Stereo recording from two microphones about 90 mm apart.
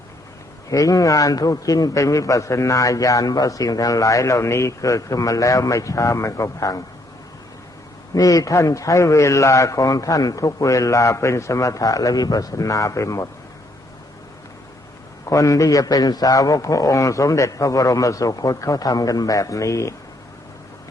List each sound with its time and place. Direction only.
0.7 s a man's voice: 40° left (ahead or behind)
8.1 s a man's voice: 40° left (ahead or behind)
15.3 s a man's voice: 40° left (ahead or behind)